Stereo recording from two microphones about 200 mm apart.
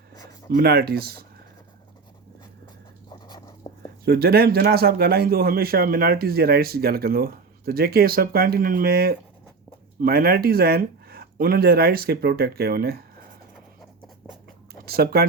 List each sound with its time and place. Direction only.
0.1 s a sound: 15° left (ahead or behind)
0.5 s a man's voice: 50° right (ahead or behind)
3.1 s dog: 20° left (ahead or behind)
3.6 s bird: 25° left (ahead or behind)
4.0 s a man's voice: 50° right (ahead or behind)
14.7 s speech: 50° right (ahead or behind)